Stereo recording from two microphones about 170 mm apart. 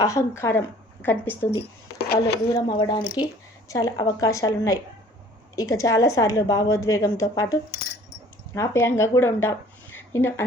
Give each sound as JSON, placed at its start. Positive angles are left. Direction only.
{"t": 0.0, "sound": "a woman's voice", "side_deg": 15}
{"t": 2.0, "sound": "speech", "side_deg": 70}
{"t": 2.5, "sound": "a woman's voice", "side_deg": 25}